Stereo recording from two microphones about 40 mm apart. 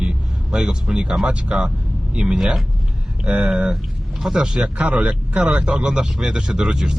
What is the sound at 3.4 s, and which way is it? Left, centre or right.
Speech, centre.